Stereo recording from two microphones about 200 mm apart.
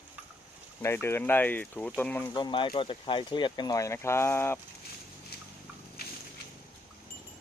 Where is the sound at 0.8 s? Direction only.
10° left (ahead or behind).